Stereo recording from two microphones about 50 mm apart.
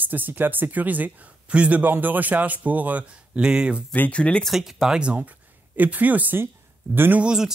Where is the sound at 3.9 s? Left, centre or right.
Left.